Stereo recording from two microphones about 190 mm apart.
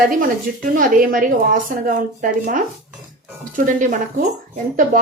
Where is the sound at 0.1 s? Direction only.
45° right (ahead or behind).